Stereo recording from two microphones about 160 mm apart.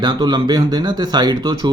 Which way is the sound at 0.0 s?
25° right (ahead or behind).